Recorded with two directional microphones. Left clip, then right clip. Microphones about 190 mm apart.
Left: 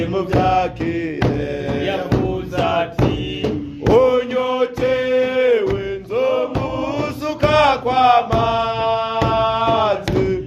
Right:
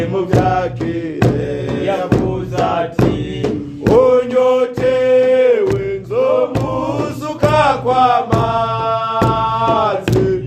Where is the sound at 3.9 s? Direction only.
35° left (ahead or behind).